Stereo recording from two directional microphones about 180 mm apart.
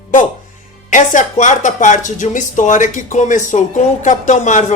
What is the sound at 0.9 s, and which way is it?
Speech, 45° left (ahead or behind).